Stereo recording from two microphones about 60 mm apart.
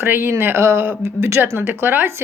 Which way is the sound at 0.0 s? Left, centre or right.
Right.